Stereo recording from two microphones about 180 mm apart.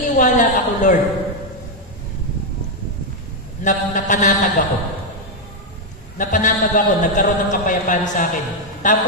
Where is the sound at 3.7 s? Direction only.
45° left (ahead or behind).